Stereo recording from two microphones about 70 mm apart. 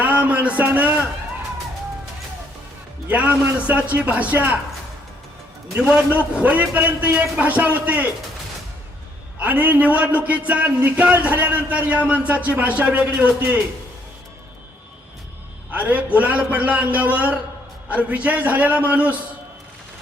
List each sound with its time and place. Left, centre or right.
0.3 s a man's voice: right
3.1 s a man's voice: right
5.9 s a man's voice: centre
9.4 s a man's voice: right
15.7 s a man's voice: right